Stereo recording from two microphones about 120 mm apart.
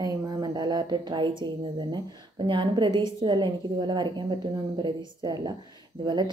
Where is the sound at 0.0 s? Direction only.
35° right (ahead or behind).